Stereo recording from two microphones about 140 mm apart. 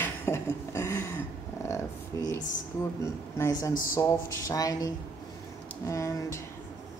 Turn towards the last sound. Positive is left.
turn(degrees=20)  # may be behind; listen again after turning